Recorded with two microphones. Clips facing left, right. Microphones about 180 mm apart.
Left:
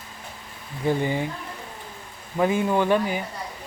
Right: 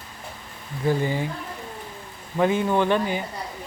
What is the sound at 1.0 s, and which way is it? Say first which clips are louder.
Speech: even; 15° left (ahead or behind).